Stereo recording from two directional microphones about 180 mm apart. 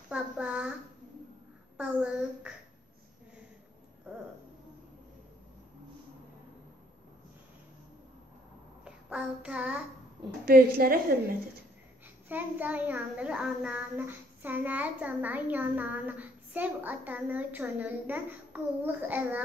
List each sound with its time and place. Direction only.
0.1 s child singing: 5° right (ahead or behind)
1.8 s child singing: 5° right (ahead or behind)
8.8 s child singing: 5° right (ahead or behind)
10.4 s a woman's voice: 55° right (ahead or behind)
12.3 s a child's voice: 10° right (ahead or behind)